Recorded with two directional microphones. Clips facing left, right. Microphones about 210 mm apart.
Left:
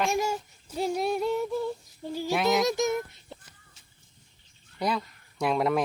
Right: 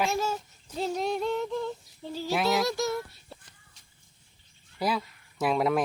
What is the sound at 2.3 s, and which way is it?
Yodeling, centre (ahead or behind).